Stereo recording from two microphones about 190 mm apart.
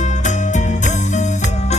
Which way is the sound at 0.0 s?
40° left (ahead or behind).